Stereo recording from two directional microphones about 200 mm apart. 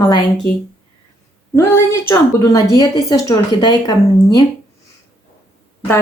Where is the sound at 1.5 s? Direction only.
15° left (ahead or behind).